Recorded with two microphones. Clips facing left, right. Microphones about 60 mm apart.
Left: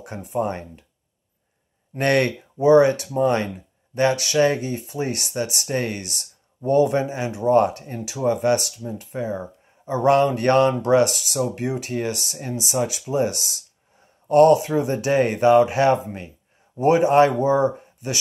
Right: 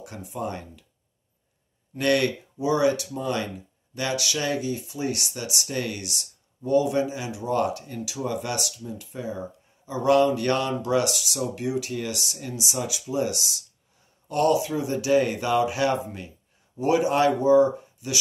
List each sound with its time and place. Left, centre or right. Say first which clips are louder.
0.0 s speech: left 7 dB; left
2.0 s speech: left 3 dB; left